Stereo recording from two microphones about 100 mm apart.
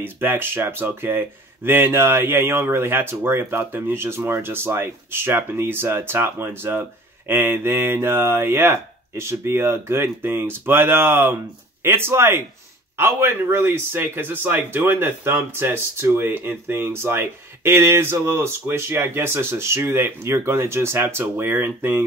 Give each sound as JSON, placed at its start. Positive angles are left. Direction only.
{"t": 0.0, "sound": "a man's voice", "side_deg": -20}